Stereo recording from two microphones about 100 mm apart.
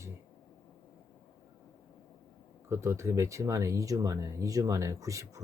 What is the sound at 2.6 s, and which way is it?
Speech, 30° right (ahead or behind).